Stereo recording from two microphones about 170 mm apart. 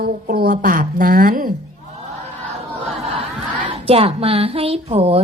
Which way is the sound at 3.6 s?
30° right (ahead or behind).